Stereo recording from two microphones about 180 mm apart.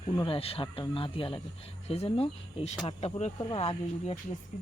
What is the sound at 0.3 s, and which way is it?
Speech, 30° left (ahead or behind).